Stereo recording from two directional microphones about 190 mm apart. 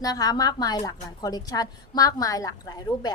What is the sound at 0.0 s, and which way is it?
A woman's voice, 20° left (ahead or behind).